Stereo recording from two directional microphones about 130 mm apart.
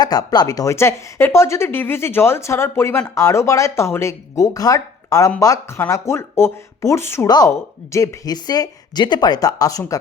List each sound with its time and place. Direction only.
0.0 s speech: 30° left (ahead or behind)
7.3 s a woman's voice: 30° left (ahead or behind)